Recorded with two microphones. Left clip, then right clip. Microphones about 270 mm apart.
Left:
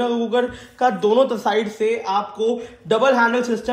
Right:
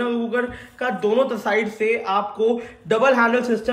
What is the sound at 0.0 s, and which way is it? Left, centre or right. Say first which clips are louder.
A man's voice: left 3 dB; centre.